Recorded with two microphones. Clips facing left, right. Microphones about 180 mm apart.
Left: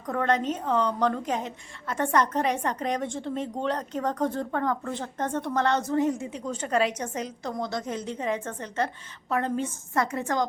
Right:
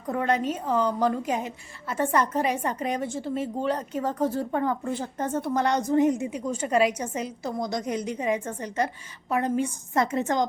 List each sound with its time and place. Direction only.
0.1 s a woman's voice: 10° right (ahead or behind)